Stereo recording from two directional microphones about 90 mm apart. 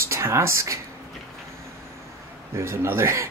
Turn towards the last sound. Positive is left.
turn(degrees=-30)  # may be behind; listen again after turning